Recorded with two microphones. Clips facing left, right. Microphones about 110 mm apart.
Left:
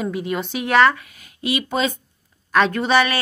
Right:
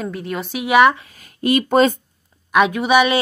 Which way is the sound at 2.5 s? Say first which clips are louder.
Right 2 dB; 10° right (ahead or behind).